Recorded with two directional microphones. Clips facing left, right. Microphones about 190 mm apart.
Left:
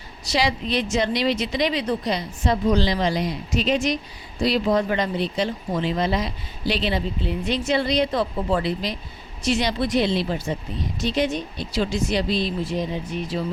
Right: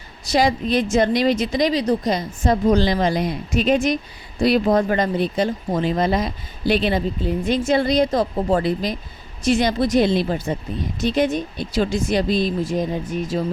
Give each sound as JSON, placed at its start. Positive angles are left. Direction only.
{"t": 0.3, "sound": "speech", "side_deg": -50}